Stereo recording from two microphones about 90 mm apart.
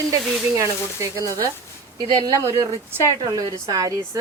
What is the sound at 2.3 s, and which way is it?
A woman's voice, 35° right (ahead or behind).